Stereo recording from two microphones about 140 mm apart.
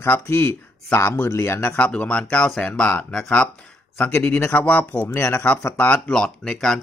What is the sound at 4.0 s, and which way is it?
Speech, 20° left (ahead or behind).